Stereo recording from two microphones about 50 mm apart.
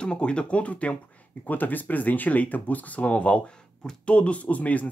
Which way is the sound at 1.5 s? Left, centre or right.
Left.